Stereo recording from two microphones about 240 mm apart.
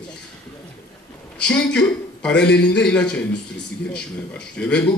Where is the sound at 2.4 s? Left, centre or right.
Left.